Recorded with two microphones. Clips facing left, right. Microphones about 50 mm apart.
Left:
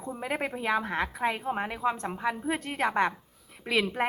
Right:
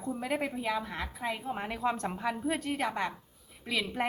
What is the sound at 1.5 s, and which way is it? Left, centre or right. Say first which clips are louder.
Speech: left 3 dB; left.